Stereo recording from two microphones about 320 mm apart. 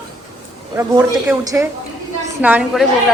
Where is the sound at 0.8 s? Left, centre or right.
Centre.